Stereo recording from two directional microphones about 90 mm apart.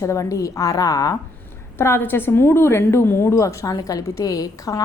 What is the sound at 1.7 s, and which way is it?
A woman's voice, 25° left (ahead or behind).